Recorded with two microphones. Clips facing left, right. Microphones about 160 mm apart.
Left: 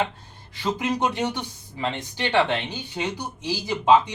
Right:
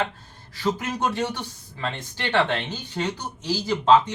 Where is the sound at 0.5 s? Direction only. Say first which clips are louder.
Left 1 dB; 20° left (ahead or behind).